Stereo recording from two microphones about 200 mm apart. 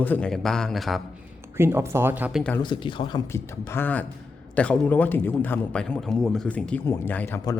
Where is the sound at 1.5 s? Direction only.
10° right (ahead or behind).